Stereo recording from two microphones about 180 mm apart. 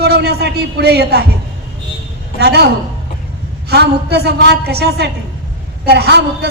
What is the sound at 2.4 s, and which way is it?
A woman's voice, 65° right (ahead or behind).